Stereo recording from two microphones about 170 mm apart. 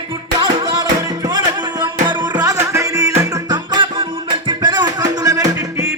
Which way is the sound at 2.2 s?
25° right (ahead or behind).